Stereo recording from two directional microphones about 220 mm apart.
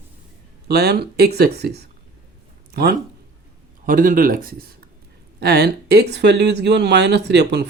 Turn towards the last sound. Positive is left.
turn(degrees=-50)  # may be behind; listen again after turning